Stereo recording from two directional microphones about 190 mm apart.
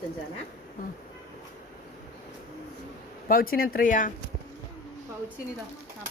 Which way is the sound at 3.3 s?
50° left (ahead or behind).